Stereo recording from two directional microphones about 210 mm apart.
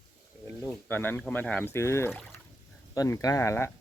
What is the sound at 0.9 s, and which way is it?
Speech, 10° left (ahead or behind).